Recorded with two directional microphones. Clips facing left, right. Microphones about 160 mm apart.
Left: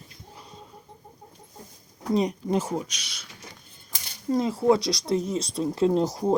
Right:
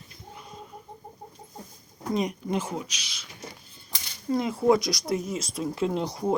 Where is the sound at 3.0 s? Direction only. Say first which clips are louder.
Even; 55° left (ahead or behind).